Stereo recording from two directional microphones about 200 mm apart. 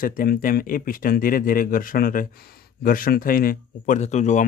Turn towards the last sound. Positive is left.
turn(degrees=35)  # may be behind; listen again after turning